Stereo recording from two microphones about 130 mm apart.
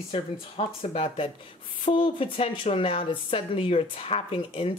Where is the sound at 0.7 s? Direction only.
50° left (ahead or behind).